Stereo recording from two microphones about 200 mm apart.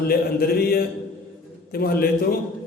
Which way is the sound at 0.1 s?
50° left (ahead or behind).